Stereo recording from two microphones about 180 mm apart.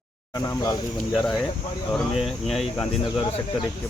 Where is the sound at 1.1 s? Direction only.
5° left (ahead or behind).